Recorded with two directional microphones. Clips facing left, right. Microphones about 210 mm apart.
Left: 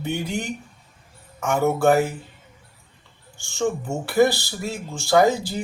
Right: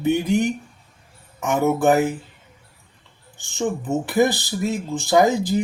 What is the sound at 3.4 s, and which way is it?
Speech, 20° right (ahead or behind).